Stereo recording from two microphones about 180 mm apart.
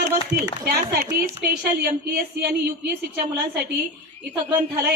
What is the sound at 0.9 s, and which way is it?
Speech, 50° right (ahead or behind).